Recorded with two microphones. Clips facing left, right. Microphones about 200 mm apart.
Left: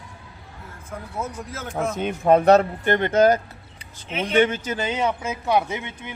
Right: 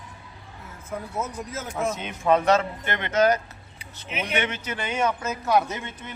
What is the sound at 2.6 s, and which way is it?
Speech, 45° left (ahead or behind).